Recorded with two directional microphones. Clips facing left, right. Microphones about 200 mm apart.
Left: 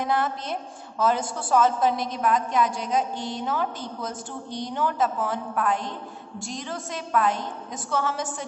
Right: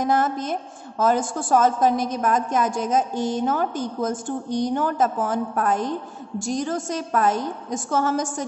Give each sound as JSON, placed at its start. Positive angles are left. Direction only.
{"t": 0.0, "sound": "a woman's voice", "side_deg": -45}